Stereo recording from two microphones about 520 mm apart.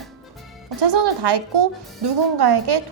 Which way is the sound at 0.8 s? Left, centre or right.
Right.